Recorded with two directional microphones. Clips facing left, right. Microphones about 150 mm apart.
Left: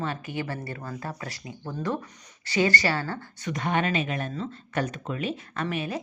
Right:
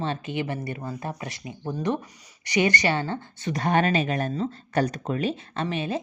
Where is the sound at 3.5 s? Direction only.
35° right (ahead or behind).